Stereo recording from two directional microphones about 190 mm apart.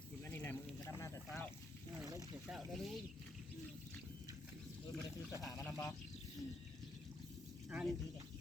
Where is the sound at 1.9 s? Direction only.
20° right (ahead or behind).